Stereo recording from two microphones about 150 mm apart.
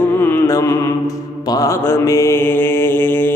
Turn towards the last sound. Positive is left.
turn(degrees=15)  # may be behind; listen again after turning